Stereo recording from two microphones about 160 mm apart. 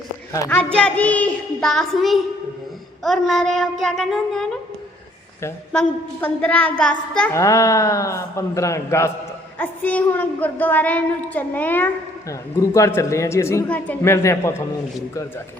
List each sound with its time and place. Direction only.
0.3 s a woman's voice: 15° left (ahead or behind)
0.6 s child singing: 5° left (ahead or behind)
6.1 s a woman's voice: 10° left (ahead or behind)
7.3 s a man's voice: 20° left (ahead or behind)